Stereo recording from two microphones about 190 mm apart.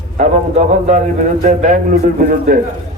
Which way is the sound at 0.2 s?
40° right (ahead or behind).